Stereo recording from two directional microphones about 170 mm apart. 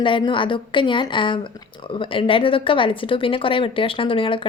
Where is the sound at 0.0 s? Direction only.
30° left (ahead or behind).